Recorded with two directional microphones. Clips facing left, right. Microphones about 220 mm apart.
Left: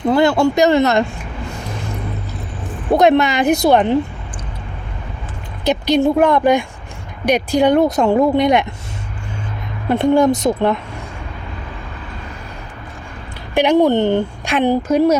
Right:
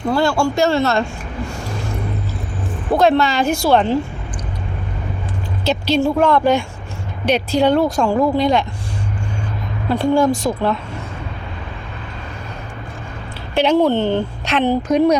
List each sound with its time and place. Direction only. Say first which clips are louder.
0.1 s speech: left 3 dB; 20° left (ahead or behind)
2.9 s speech: left 2 dB; 20° left (ahead or behind)
5.6 s speech: left 3 dB; 15° left (ahead or behind)
9.9 s speech: left 2 dB; 20° left (ahead or behind)
13.5 s speech: left 2 dB; 15° left (ahead or behind)